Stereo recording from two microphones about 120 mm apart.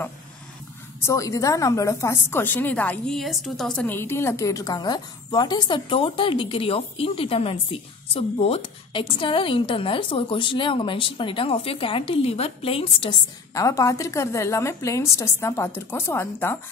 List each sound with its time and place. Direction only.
1.0 s a woman's voice: 25° left (ahead or behind); by 3.2 s 10° left (ahead or behind)
3.2 s a woman's voice: centre (ahead or behind)
3.8 s a woman's voice: 20° left (ahead or behind); by 13.2 s 50° left (ahead or behind)
13.6 s a woman's voice: 25° left (ahead or behind)